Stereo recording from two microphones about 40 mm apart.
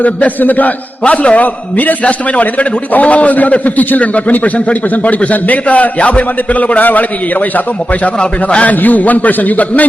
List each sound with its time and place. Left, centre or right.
0.0 s a man's voice: left
1.0 s a man's voice: left
8.2 s a man's voice: left
8.6 s a man's voice: left